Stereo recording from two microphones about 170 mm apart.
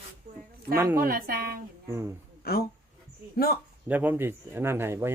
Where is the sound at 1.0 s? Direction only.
60° right (ahead or behind).